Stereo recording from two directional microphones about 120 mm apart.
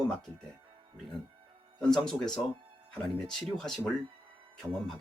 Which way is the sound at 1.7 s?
5° left (ahead or behind).